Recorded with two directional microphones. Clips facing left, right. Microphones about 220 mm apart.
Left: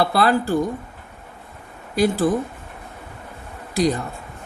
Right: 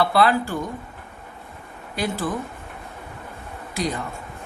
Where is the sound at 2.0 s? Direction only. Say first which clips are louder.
Left 8 dB; 35° left (ahead or behind).